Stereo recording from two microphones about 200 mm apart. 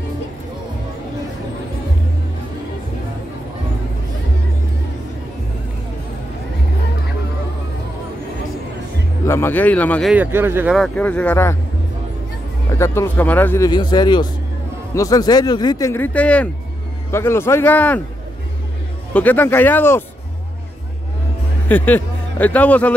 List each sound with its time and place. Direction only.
9.2 s speech: 10° left (ahead or behind)
10.1 s speech: 10° right (ahead or behind)
10.8 s speech: 5° left (ahead or behind)
12.7 s speech: 10° left (ahead or behind)
13.7 s speech: 20° left (ahead or behind)
19.1 s speech: 10° left (ahead or behind)
21.6 s speech: 10° left (ahead or behind)